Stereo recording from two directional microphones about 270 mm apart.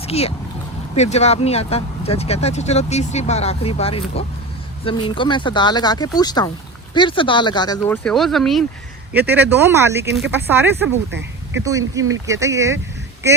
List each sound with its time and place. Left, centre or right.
0.0 s speech: left
8.0 s speech: centre
11.1 s a sound: right
11.6 s speech: centre